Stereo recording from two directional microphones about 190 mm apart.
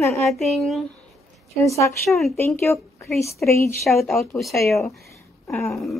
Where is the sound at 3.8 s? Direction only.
Centre (ahead or behind).